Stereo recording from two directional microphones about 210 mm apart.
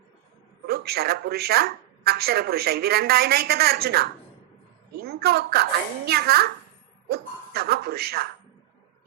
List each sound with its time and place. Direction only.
0.7 s a woman's voice: 50° right (ahead or behind)